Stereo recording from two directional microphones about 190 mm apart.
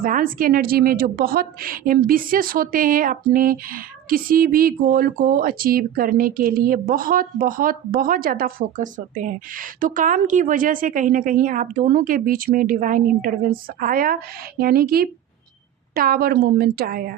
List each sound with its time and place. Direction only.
0.0 s a woman's voice: 45° right (ahead or behind)